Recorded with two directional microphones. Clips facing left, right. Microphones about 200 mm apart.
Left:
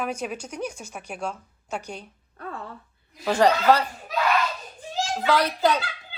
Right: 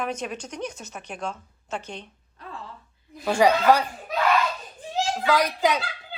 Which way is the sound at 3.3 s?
10° right (ahead or behind).